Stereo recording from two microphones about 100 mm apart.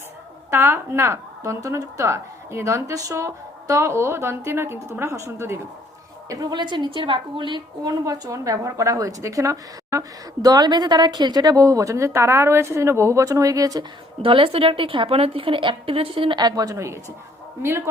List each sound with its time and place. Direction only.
0.5 s a woman's voice: 25° right (ahead or behind)
6.2 s a woman's voice: 40° right (ahead or behind)
8.0 s speech: 35° right (ahead or behind)
14.2 s a woman's voice: 65° right (ahead or behind)
16.4 s a woman's voice: 40° right (ahead or behind); by 17.8 s 25° right (ahead or behind)